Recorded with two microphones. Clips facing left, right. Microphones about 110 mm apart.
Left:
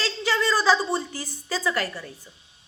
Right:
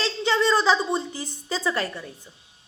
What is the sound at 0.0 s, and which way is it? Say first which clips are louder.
A woman's voice: right 3 dB; 25° right (ahead or behind).